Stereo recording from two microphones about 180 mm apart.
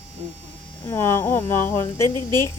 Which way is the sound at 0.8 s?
15° left (ahead or behind).